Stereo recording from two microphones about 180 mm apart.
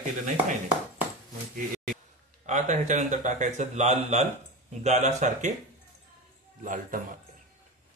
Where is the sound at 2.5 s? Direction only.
40° right (ahead or behind).